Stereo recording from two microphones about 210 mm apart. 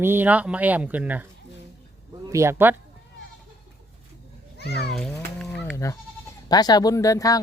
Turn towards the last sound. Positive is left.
turn(degrees=15)  # may be behind; listen again after turning